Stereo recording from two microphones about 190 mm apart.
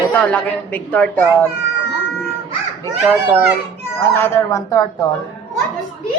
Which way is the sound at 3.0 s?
10° right (ahead or behind).